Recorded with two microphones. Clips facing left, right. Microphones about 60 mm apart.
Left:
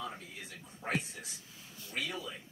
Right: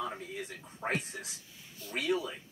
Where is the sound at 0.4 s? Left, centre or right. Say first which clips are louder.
Right 7 dB; right.